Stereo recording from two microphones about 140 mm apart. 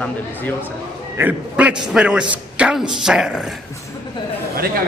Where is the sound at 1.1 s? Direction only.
10° right (ahead or behind).